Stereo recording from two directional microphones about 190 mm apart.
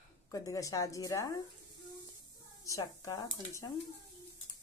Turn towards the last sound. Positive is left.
turn(degrees=15)  # may be behind; listen again after turning